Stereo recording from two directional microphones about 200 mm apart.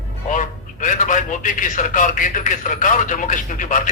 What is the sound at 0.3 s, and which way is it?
A man's voice, 40° left (ahead or behind).